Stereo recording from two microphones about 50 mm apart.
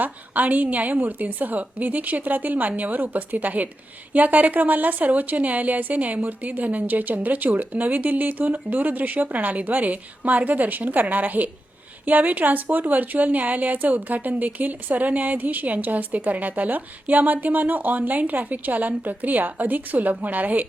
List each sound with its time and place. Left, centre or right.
0.0 s speech: right